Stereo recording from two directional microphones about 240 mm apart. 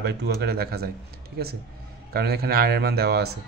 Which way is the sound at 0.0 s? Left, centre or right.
Right.